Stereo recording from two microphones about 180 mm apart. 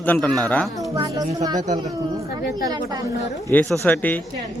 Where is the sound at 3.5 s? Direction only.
10° left (ahead or behind).